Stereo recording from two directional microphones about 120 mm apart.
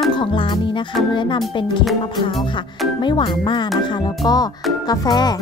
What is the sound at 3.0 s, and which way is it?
Speech, 40° left (ahead or behind).